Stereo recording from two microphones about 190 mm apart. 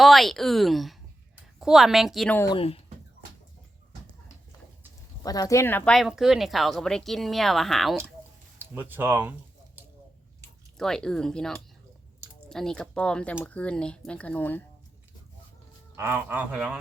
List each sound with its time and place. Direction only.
0.0 s speech: centre (ahead or behind)
2.6 s speech: 30° left (ahead or behind)
5.2 s speech: 20° left (ahead or behind); by 7.9 s centre (ahead or behind)
8.7 s speech: 10° right (ahead or behind)
10.8 s speech: 5° left (ahead or behind)
16.0 s speech: 10° right (ahead or behind)